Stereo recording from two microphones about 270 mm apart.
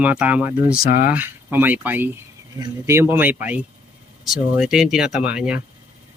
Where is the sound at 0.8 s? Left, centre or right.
Left.